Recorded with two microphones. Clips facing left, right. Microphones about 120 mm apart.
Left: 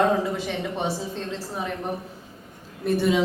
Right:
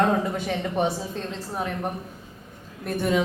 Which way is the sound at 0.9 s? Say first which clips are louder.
Even; centre (ahead or behind).